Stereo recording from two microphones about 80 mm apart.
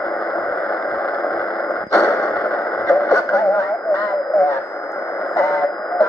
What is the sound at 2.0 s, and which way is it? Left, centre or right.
Radio, left.